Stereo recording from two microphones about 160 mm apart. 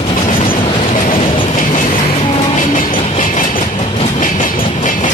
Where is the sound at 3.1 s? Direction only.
55° left (ahead or behind).